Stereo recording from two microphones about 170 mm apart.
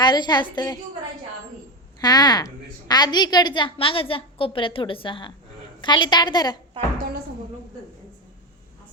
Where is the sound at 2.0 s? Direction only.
25° left (ahead or behind).